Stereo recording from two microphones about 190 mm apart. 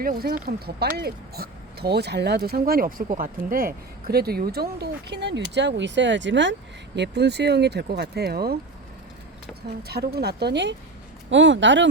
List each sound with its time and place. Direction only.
0.0 s speech: 50° right (ahead or behind)
9.8 s speech: 55° right (ahead or behind); by 11.9 s 75° right (ahead or behind)